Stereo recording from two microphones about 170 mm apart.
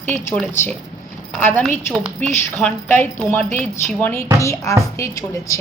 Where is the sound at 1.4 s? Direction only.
10° left (ahead or behind).